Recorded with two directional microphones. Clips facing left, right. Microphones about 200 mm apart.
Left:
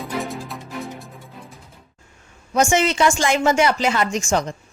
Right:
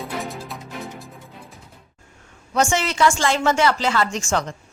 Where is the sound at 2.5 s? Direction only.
15° left (ahead or behind).